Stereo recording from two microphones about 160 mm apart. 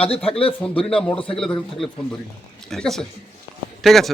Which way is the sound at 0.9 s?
10° left (ahead or behind).